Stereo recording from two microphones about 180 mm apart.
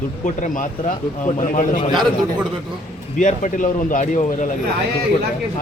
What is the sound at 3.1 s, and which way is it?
A man's voice, 45° left (ahead or behind).